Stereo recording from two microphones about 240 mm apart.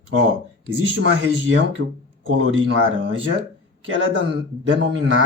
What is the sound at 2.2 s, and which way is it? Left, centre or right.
Speech, right.